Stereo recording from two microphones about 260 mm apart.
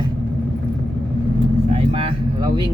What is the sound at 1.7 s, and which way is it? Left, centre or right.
Vehicle, right.